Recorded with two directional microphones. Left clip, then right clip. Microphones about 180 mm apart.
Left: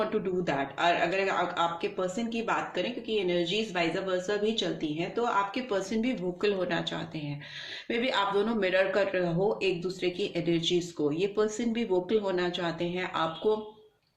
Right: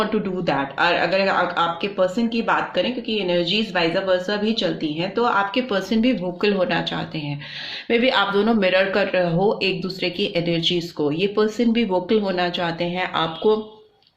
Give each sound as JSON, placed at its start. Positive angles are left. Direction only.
{"t": 0.4, "sound": "speech", "side_deg": -30}